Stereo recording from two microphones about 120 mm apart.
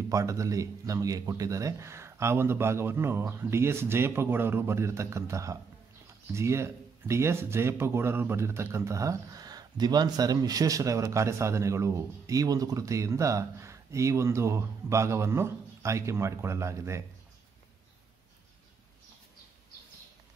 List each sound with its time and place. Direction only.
0.1 s speech: 25° right (ahead or behind)